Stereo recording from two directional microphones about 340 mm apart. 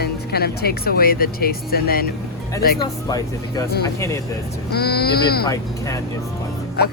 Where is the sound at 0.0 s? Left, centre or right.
Left.